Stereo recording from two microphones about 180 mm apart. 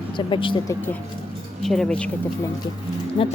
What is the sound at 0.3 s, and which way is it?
Speech, 30° left (ahead or behind).